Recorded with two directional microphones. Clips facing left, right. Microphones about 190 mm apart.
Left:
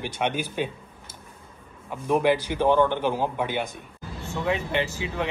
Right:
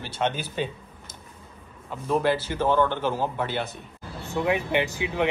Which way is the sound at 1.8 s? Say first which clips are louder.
Left 2 dB; 15° left (ahead or behind).